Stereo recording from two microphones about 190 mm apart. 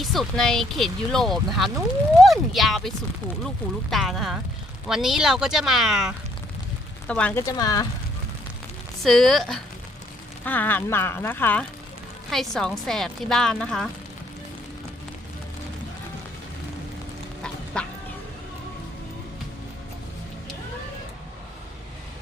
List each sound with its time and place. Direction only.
0.0 s speech: centre (ahead or behind)
7.4 s speech: 20° left (ahead or behind)
9.0 s speech: centre (ahead or behind)
17.7 s speech: 5° left (ahead or behind)